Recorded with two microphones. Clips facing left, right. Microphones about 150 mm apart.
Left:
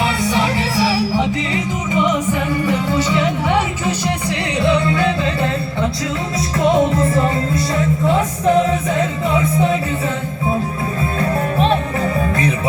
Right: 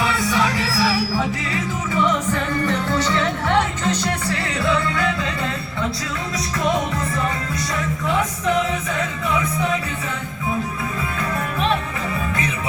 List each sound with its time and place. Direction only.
0.0 s music: 25° left (ahead or behind)
4.6 s music: 25° left (ahead or behind)
6.9 s music: 40° left (ahead or behind)
11.2 s music: 35° left (ahead or behind)